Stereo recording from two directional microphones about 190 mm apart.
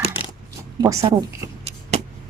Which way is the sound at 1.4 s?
20° right (ahead or behind).